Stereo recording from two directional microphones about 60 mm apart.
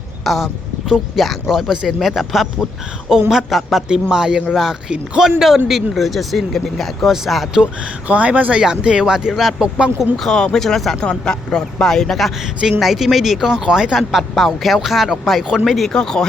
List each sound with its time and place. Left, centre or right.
0.3 s speech: centre
7.5 s speech: centre
9.7 s speech: centre
10.2 s speech: centre